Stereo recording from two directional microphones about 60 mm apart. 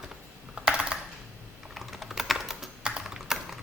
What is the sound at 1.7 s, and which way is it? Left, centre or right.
Typing, centre.